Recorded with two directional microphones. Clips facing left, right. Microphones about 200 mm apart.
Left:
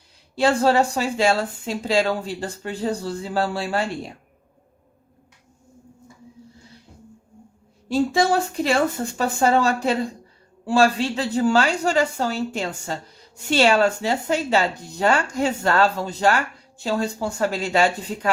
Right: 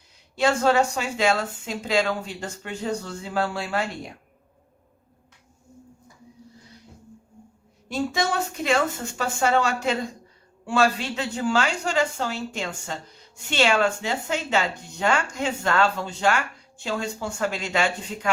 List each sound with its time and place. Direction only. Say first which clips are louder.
0.3 s speech: left 2 dB; 35° left (ahead or behind)
7.9 s speech: left 6 dB; 30° left (ahead or behind)